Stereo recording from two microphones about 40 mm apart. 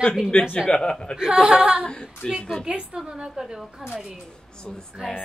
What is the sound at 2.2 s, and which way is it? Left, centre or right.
Speech, centre.